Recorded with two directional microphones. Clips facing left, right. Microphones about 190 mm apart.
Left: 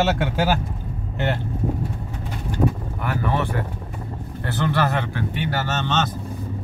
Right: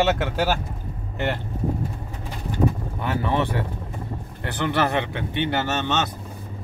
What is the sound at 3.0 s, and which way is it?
Speech, 25° right (ahead or behind).